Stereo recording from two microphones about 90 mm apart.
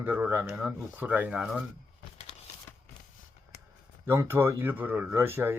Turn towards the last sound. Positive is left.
turn(degrees=-25)  # may be behind; listen again after turning